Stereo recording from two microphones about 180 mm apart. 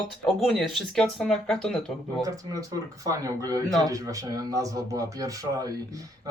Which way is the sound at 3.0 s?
20° right (ahead or behind).